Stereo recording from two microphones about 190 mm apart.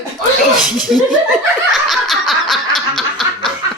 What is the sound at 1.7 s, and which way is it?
Snicker, centre (ahead or behind).